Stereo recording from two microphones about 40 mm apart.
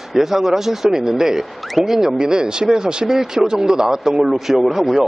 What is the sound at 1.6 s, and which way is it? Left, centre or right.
Speech, centre.